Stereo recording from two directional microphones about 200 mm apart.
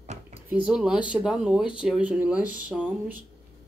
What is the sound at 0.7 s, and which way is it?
Speech, 5° right (ahead or behind).